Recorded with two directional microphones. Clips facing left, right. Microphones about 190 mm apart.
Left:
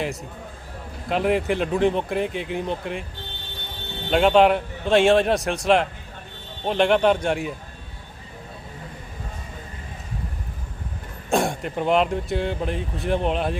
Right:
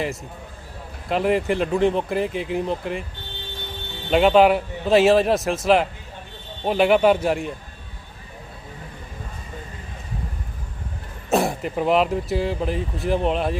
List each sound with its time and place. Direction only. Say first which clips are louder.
1.0 s speech: right 1 dB; centre (ahead or behind)
4.1 s speech: right 1 dB; 5° right (ahead or behind)
11.3 s speech: right 2 dB; centre (ahead or behind)